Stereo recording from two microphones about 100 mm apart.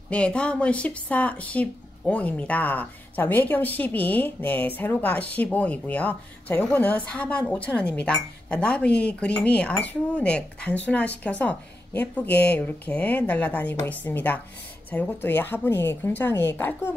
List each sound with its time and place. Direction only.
0.1 s a woman's voice: 10° left (ahead or behind)